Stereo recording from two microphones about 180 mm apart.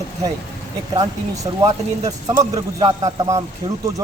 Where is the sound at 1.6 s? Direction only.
20° right (ahead or behind).